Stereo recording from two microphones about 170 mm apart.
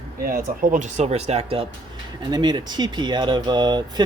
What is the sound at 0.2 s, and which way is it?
Speech, 55° right (ahead or behind).